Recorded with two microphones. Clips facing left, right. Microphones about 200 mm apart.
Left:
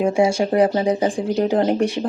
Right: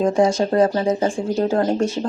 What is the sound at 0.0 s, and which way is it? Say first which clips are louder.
Speech: even; 10° left (ahead or behind).